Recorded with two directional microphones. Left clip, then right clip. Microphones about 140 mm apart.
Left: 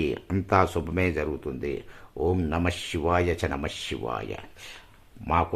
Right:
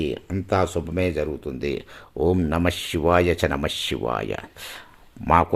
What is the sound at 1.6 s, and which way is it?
Speech, 40° right (ahead or behind).